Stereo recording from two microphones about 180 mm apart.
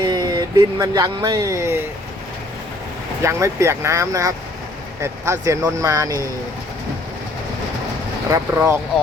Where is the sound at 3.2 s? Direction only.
15° right (ahead or behind).